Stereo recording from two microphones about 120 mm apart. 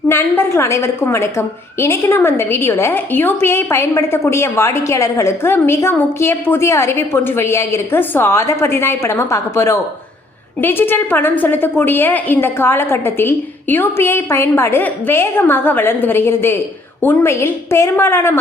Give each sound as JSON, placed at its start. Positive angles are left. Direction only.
{"t": 0.1, "sound": "a woman's voice", "side_deg": 20}